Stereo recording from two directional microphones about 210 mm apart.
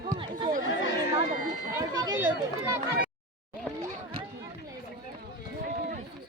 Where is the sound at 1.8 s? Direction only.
15° right (ahead or behind).